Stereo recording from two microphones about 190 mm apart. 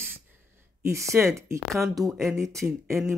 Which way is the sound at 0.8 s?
15° right (ahead or behind).